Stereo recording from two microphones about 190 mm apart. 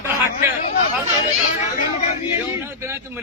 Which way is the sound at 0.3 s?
45° left (ahead or behind).